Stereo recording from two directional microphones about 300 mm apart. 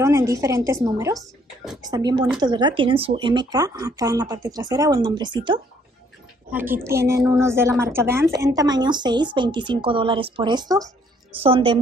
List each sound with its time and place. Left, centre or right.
0.0 s a woman's voice: centre
7.1 s a woman's voice: centre